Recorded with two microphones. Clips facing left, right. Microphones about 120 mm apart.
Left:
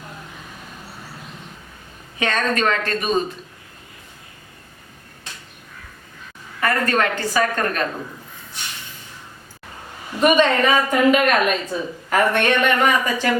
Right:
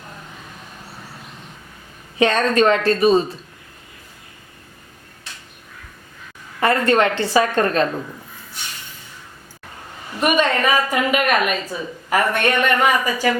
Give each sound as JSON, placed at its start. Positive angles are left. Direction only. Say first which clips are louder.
{"t": 2.1, "sound": "a woman's voice", "louder": "right 5 dB", "side_deg": -30}
{"t": 6.6, "sound": "a woman's voice", "louder": "right 4 dB", "side_deg": -25}
{"t": 10.2, "sound": "a woman's voice", "louder": "left 2 dB", "side_deg": -10}